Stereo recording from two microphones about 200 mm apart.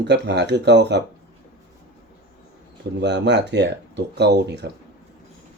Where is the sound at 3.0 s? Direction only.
60° right (ahead or behind).